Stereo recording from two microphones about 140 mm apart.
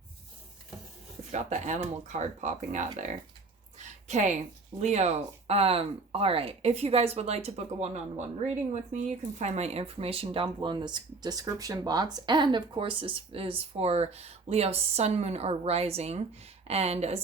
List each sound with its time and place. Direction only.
1.3 s speech: 55° right (ahead or behind)